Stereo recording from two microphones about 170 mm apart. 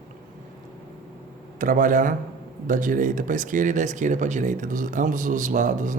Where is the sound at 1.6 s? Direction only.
55° right (ahead or behind).